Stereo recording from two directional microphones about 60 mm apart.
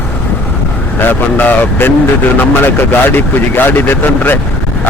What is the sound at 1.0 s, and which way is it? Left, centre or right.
Speech, left.